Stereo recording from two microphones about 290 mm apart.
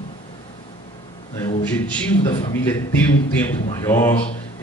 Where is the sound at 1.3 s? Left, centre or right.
Centre.